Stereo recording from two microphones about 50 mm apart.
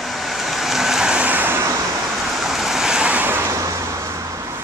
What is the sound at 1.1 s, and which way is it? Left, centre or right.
Vehicle, right.